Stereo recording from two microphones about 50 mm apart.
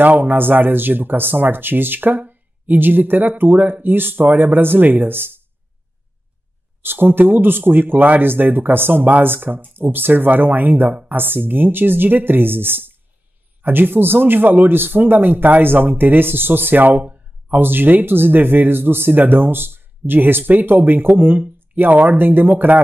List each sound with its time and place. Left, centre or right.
0.0 s speech: right
6.8 s speech: right